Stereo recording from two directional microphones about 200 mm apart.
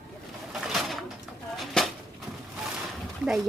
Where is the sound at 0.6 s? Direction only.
Centre (ahead or behind).